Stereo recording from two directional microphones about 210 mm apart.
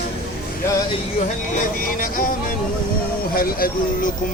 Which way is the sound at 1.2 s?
35° left (ahead or behind).